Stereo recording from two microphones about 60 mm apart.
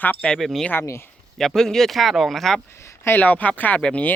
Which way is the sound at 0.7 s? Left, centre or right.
Left.